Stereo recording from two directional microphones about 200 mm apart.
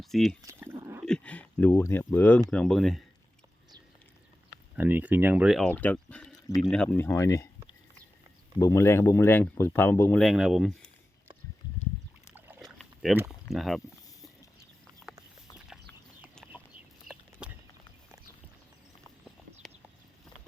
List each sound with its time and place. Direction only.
0.0 s speech: centre (ahead or behind)
0.4 s a sound: 10° right (ahead or behind)
1.0 s speech: 5° left (ahead or behind)
4.8 s speech: 10° right (ahead or behind); by 7.5 s 15° left (ahead or behind)
8.5 s speech: 15° left (ahead or behind)
12.3 s boat: 10° right (ahead or behind)
12.6 s rowboat: centre (ahead or behind)
13.5 s speech: centre (ahead or behind)
15.1 s a sound: 5° right (ahead or behind)
17.1 s chicken: 45° right (ahead or behind)